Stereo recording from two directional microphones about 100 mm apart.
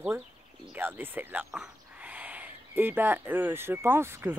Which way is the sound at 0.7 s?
20° right (ahead or behind).